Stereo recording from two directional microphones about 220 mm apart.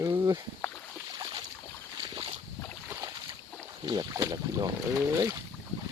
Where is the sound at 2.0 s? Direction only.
20° right (ahead or behind).